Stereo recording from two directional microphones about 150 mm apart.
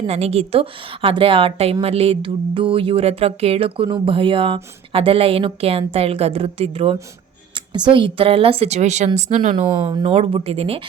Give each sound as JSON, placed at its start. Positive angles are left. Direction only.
{"t": 0.1, "sound": "a woman's voice", "side_deg": -45}
{"t": 9.6, "sound": "a woman's voice", "side_deg": -35}